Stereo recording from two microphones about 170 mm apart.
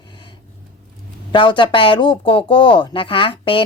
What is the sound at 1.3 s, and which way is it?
Speech, 30° left (ahead or behind).